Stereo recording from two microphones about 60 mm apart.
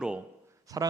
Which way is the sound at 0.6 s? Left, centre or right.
Right.